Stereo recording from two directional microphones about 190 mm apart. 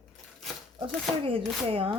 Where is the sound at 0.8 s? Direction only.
30° right (ahead or behind).